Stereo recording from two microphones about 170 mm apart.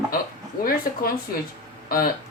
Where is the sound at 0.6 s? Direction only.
60° left (ahead or behind).